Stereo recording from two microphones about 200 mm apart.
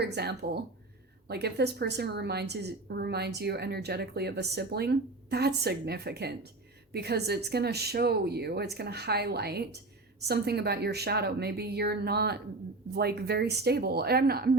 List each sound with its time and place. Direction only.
0.0 s a woman's voice: 55° right (ahead or behind)